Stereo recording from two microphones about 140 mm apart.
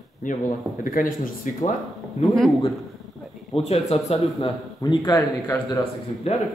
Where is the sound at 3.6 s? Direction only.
50° left (ahead or behind).